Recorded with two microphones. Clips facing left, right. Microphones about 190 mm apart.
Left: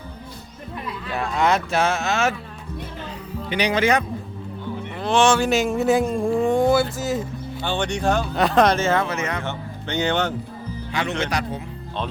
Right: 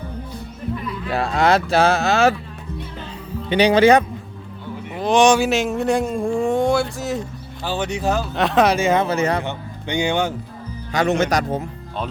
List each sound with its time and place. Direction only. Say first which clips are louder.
1.1 s speech: right 3 dB; 35° right (ahead or behind)
3.5 s speech: right 7 dB; 30° right (ahead or behind)
4.9 s speech: right 3 dB; 15° right (ahead or behind)
5.5 s speech: even; centre (ahead or behind)
9.0 s speech: right 6 dB; 35° right (ahead or behind)
9.4 s speech: right 2 dB; 15° right (ahead or behind)
11.2 s speech: right 6 dB; 45° right (ahead or behind)